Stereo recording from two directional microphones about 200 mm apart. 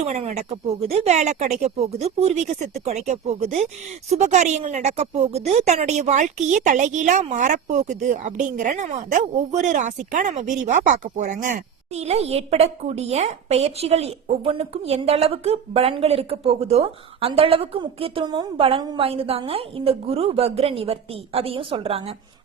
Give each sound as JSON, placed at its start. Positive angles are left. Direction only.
{"t": 0.0, "sound": "a woman's voice", "side_deg": -35}